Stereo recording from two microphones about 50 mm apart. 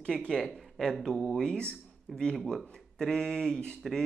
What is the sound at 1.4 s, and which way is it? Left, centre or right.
Speech, centre.